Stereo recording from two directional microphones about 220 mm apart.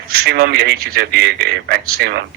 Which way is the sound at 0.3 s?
45° right (ahead or behind).